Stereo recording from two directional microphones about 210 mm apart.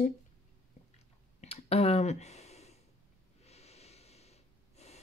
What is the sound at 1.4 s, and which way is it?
Clicking, 30° left (ahead or behind).